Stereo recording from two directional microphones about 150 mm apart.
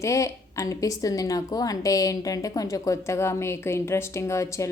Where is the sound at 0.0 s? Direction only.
20° left (ahead or behind).